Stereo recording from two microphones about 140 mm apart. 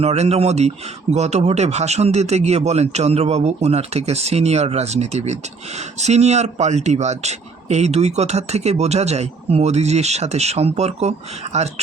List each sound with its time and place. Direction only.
0.0 s speech: 50° right (ahead or behind)